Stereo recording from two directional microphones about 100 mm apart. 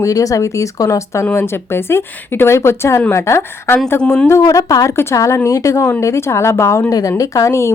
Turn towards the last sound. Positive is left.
turn(degrees=30)  # may be behind; listen again after turning